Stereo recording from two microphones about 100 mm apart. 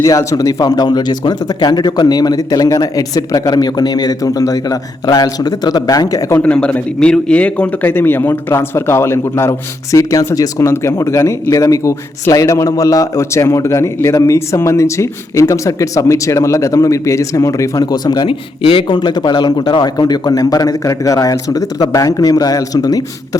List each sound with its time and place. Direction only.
0.0 s a man's voice: 30° left (ahead or behind)
6.4 s a man's voice: 10° left (ahead or behind); by 18.3 s 45° left (ahead or behind)
18.3 s a man's voice: 60° left (ahead or behind); by 23.4 s 40° left (ahead or behind)